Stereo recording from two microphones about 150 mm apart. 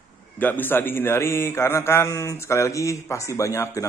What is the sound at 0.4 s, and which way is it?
A man's voice, 10° left (ahead or behind).